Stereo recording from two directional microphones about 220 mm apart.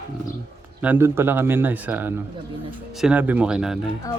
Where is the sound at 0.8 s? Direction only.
10° right (ahead or behind).